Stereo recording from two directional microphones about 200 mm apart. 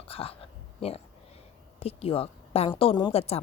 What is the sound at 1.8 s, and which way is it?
A woman's voice, 30° left (ahead or behind).